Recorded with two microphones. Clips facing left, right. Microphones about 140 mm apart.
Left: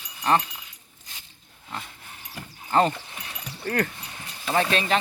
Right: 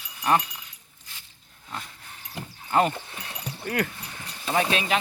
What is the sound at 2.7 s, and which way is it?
Speech, 5° right (ahead or behind).